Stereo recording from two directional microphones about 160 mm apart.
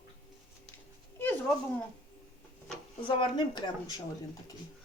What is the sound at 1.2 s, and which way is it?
Speech, 10° left (ahead or behind).